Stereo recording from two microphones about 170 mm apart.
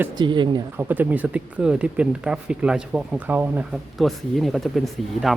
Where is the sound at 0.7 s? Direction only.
10° right (ahead or behind).